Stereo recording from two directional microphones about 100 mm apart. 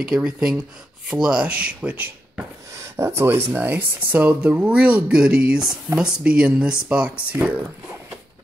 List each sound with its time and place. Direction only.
0.0 s speech: 5° right (ahead or behind)
2.7 s speech: 25° right (ahead or behind)